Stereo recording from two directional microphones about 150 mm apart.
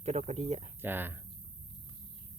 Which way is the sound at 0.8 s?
15° right (ahead or behind).